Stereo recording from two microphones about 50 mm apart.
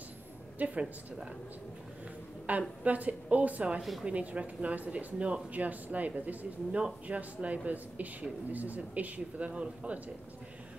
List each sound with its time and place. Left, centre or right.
0.6 s speech: right
2.5 s a woman's voice: right